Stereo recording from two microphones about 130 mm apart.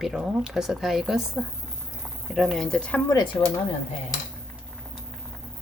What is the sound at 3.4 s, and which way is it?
Speech, 20° left (ahead or behind).